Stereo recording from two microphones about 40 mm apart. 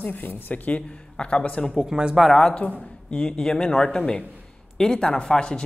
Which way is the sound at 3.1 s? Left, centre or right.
Left.